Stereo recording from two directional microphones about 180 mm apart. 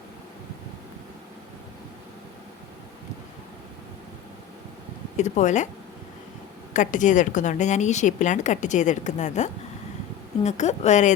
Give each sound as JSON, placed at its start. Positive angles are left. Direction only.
{"t": 5.1, "sound": "a woman's voice", "side_deg": 40}
{"t": 6.7, "sound": "a woman's voice", "side_deg": 45}